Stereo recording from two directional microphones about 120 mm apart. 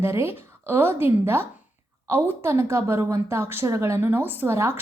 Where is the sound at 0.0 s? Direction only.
20° right (ahead or behind).